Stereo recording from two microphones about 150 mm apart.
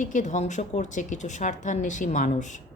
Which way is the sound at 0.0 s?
55° left (ahead or behind).